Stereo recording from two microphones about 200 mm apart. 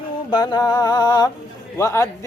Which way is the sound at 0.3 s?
20° left (ahead or behind).